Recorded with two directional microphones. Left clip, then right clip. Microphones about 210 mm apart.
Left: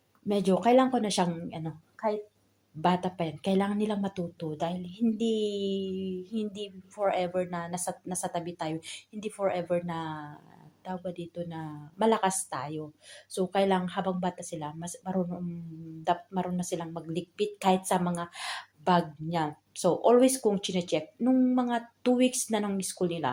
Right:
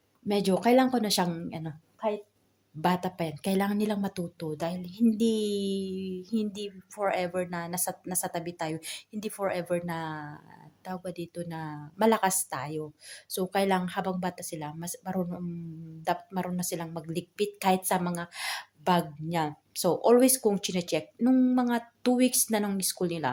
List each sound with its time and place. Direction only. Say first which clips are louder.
0.3 s speech: even; 10° right (ahead or behind)